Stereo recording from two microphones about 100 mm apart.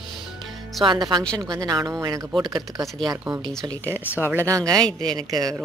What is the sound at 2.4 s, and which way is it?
Speech, 45° right (ahead or behind).